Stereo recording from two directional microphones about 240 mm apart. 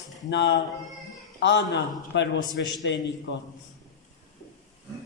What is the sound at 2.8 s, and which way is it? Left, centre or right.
Speech, left.